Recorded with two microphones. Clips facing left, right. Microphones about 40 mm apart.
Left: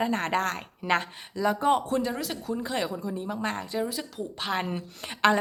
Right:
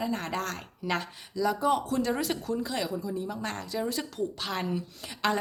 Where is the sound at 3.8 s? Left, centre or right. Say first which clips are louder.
Right 2 dB; centre.